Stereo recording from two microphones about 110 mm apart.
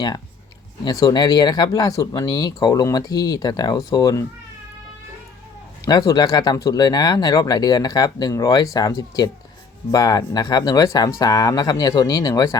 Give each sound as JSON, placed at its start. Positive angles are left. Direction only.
{"t": 0.9, "sound": "speech", "side_deg": 35}
{"t": 5.8, "sound": "speech", "side_deg": 35}